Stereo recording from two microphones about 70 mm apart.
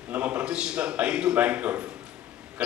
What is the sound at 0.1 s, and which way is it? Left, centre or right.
A man's voice, right.